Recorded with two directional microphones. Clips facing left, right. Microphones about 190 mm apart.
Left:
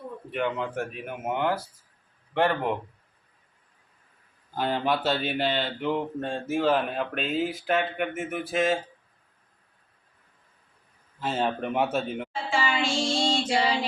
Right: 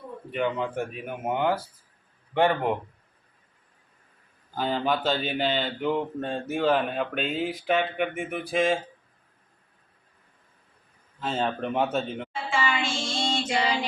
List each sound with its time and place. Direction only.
0.3 s speech: centre (ahead or behind)
4.5 s speech: 5° left (ahead or behind)
11.2 s speech: 5° left (ahead or behind)
12.3 s child singing: 35° left (ahead or behind)